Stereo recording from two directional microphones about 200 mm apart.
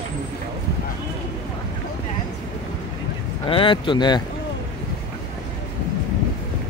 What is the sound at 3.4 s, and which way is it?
Speech, 25° left (ahead or behind).